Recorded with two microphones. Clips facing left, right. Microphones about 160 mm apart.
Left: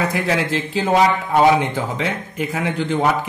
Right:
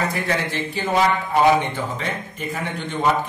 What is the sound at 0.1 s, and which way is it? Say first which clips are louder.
Speech: left 4 dB; 90° left.